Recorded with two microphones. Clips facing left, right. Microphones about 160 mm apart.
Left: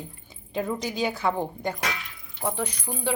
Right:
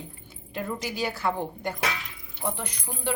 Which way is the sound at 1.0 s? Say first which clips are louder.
Left 2 dB; 20° left (ahead or behind).